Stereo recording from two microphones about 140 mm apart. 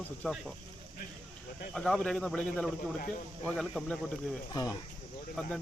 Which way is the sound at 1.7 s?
5° left (ahead or behind).